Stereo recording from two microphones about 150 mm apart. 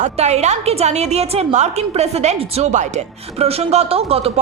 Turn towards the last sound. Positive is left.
turn(degrees=-40)  # may be behind; listen again after turning